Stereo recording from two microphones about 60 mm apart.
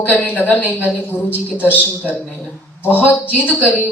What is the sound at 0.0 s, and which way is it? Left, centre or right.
A woman's voice, left.